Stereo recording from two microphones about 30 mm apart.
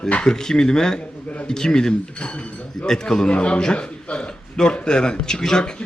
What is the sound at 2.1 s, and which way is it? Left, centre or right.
Speech, left.